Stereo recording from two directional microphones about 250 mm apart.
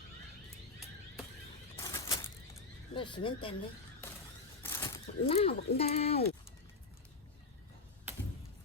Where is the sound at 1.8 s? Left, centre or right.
Centre.